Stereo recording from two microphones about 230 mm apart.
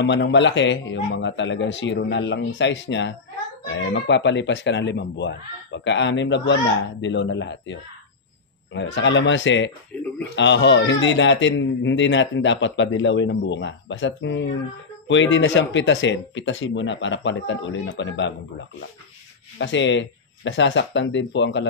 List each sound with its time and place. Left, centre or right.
0.0 s speech: left
19.6 s speech: left